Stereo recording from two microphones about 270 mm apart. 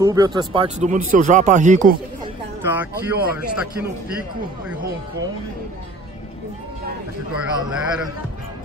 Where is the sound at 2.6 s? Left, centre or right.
Centre.